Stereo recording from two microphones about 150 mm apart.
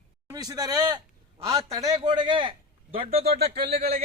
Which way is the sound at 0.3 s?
25° right (ahead or behind).